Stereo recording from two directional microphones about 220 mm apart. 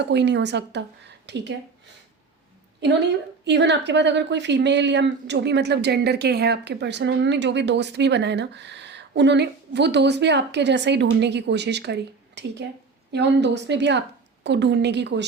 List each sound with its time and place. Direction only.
0.0 s a woman's voice: 50° right (ahead or behind)
2.8 s a woman's voice: 55° right (ahead or behind)